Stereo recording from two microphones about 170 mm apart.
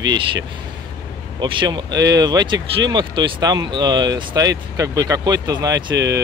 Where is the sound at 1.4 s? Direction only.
25° right (ahead or behind).